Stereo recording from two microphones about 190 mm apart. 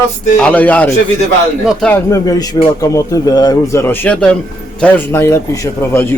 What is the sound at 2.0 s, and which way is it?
Speech, 15° left (ahead or behind).